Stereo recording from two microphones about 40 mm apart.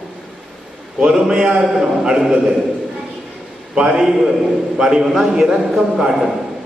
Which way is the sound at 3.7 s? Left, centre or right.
Centre.